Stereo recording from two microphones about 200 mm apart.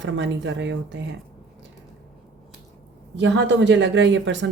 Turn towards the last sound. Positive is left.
turn(degrees=-65)  # may be behind; listen again after turning